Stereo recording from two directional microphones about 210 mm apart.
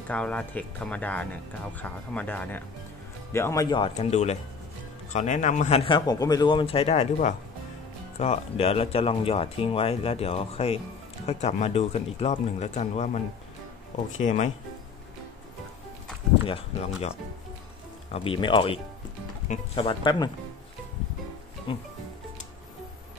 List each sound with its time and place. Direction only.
0.1 s speech: 5° left (ahead or behind); by 13.2 s 35° left (ahead or behind)
14.2 s speech: 35° left (ahead or behind)
18.1 s speech: 25° left (ahead or behind)
21.7 s speech: 25° left (ahead or behind)